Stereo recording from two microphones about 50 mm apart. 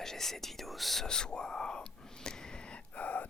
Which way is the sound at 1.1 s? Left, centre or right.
Centre.